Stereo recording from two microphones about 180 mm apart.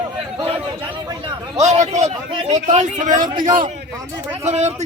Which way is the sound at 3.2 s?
25° right (ahead or behind).